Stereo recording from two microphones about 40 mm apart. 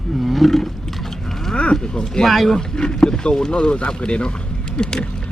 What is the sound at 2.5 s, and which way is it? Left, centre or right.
Speech, centre.